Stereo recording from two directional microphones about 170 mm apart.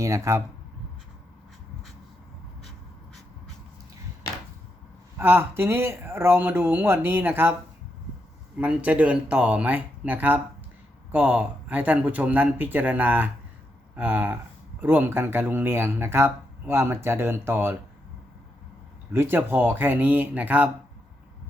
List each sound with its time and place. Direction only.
0.0 s speech: 15° right (ahead or behind)
5.1 s speech: 10° right (ahead or behind)
8.5 s speech: 10° right (ahead or behind)
19.1 s speech: 15° right (ahead or behind)